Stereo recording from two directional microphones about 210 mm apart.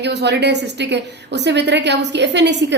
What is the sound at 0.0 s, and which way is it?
A woman's voice, 55° right (ahead or behind).